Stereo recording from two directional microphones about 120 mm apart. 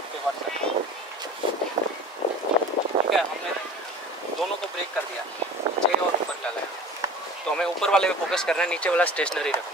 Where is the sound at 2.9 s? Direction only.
50° right (ahead or behind).